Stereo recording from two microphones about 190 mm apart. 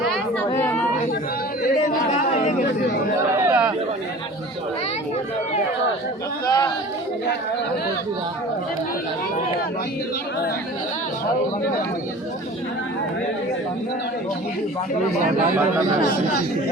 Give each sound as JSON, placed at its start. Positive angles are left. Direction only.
{"t": 0.0, "sound": "chatter", "side_deg": 0}
{"t": 1.8, "sound": "chatter", "side_deg": 35}
{"t": 3.3, "sound": "chatter", "side_deg": -10}
{"t": 6.4, "sound": "chatter", "side_deg": 20}